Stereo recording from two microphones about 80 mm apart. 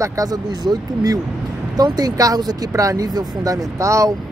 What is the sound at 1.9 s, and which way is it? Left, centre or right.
Speech, right.